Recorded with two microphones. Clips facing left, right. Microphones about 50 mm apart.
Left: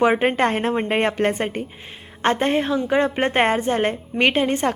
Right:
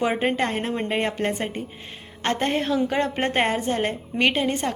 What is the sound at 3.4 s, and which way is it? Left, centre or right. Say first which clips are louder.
A woman's voice: left 5 dB; left.